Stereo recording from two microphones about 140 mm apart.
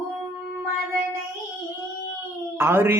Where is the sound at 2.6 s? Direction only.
15° right (ahead or behind).